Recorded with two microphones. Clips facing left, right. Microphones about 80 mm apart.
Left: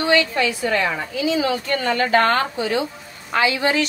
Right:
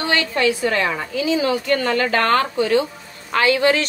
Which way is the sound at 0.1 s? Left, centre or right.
Right.